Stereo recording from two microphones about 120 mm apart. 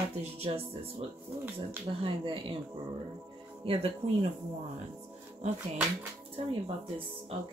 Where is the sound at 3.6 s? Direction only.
50° right (ahead or behind).